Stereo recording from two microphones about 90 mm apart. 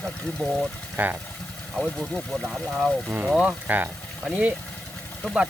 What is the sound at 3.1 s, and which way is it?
Speech, 20° right (ahead or behind).